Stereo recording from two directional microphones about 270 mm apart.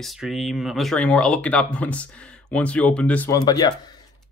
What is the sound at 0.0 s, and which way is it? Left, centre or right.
Speech, centre.